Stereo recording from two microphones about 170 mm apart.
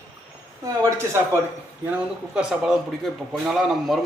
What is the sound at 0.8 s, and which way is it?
Speech, 15° right (ahead or behind).